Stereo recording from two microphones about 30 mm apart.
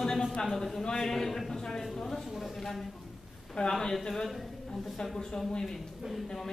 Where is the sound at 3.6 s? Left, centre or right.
Left.